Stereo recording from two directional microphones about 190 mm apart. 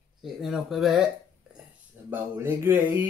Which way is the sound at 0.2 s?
Centre (ahead or behind).